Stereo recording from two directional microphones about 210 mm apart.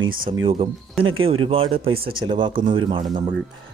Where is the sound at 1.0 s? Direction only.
75° right (ahead or behind).